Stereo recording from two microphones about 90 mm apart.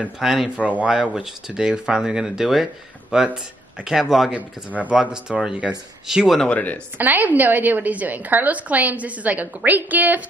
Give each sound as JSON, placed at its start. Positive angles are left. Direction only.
{"t": 0.2, "sound": "a man's voice", "side_deg": -5}
{"t": 4.3, "sound": "speech", "side_deg": -15}
{"t": 6.5, "sound": "speech", "side_deg": 15}
{"t": 7.0, "sound": "a woman's voice", "side_deg": -20}